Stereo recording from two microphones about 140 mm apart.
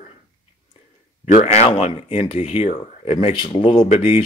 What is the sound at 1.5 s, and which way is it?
Speech, 50° left (ahead or behind).